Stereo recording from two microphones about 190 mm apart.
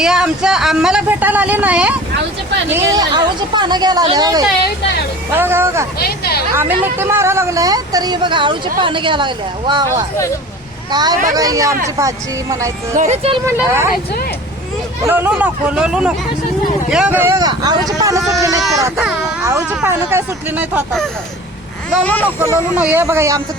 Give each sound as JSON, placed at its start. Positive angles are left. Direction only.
{"t": 0.0, "sound": "speech", "side_deg": -5}
{"t": 2.6, "sound": "speech", "side_deg": -15}
{"t": 6.1, "sound": "speech", "side_deg": 55}
{"t": 6.6, "sound": "speech", "side_deg": -10}
{"t": 10.9, "sound": "speech", "side_deg": -20}
{"t": 13.0, "sound": "speech", "side_deg": -35}
{"t": 13.6, "sound": "speech", "side_deg": -15}
{"t": 15.0, "sound": "speech", "side_deg": -10}
{"t": 19.7, "sound": "speech", "side_deg": -10}
{"t": 22.0, "sound": "speech", "side_deg": 10}
{"t": 22.8, "sound": "speech", "side_deg": -10}